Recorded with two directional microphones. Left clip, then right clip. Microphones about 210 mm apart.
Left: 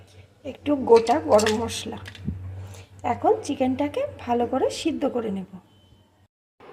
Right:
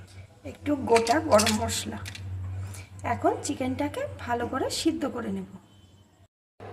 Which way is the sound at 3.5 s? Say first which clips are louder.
Left 5 dB; 20° left (ahead or behind).